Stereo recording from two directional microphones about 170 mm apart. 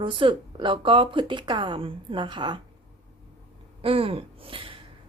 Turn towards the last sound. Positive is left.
turn(degrees=-30)  # may be behind; listen again after turning